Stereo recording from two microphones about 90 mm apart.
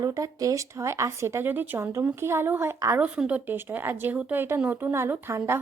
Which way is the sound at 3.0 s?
15° right (ahead or behind).